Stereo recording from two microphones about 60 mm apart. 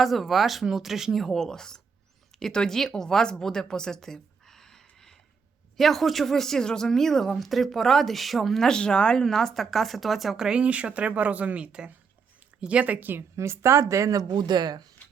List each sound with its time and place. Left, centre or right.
0.0 s speech: centre
9.2 s speech: centre
10.6 s speech: right
13.3 s speech: right